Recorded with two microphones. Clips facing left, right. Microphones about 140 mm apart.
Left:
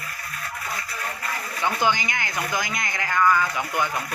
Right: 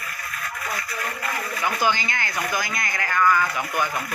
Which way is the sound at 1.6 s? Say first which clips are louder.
Left 1 dB; 20° left (ahead or behind).